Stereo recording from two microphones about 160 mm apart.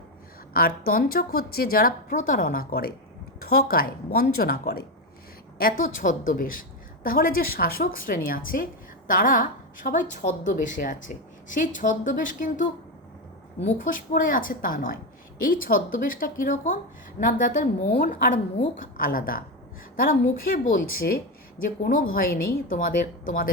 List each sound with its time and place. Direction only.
0.5 s a woman's voice: 65° left (ahead or behind)
2.1 s a woman's voice: 55° left (ahead or behind); by 4.9 s 75° left (ahead or behind)
5.5 s a woman's voice: 60° left (ahead or behind)
13.7 s a woman's voice: 55° left (ahead or behind)